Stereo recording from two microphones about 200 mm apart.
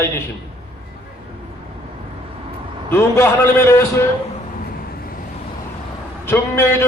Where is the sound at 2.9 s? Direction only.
10° left (ahead or behind).